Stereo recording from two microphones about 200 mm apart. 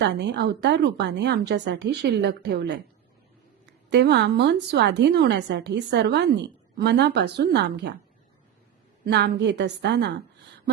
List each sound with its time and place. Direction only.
0.0 s a woman's voice: 60° right (ahead or behind)
3.8 s a woman's voice: 60° right (ahead or behind)
9.0 s a woman's voice: 55° right (ahead or behind)